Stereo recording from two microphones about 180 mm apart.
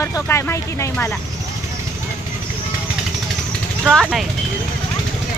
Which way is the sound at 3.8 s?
Centre (ahead or behind).